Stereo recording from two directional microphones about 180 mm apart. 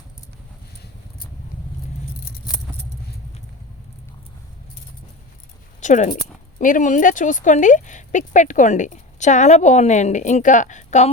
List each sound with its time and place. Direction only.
5.8 s speech: 40° left (ahead or behind)